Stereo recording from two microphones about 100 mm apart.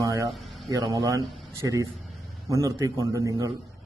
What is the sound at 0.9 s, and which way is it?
A man's voice, 35° right (ahead or behind).